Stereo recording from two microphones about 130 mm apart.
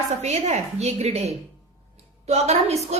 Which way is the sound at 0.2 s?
55° right (ahead or behind).